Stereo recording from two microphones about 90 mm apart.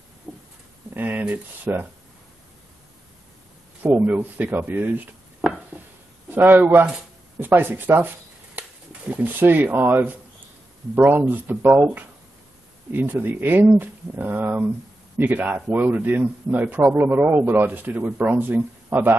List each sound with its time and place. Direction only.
0.9 s a man's voice: 20° right (ahead or behind)
3.8 s a man's voice: 20° right (ahead or behind)
6.3 s a man's voice: 20° right (ahead or behind)